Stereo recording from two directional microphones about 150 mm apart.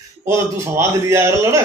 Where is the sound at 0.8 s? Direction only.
20° right (ahead or behind).